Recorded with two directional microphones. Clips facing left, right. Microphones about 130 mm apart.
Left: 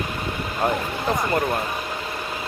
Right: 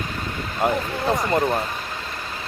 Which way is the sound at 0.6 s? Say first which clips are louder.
Right 2 dB; 20° right (ahead or behind).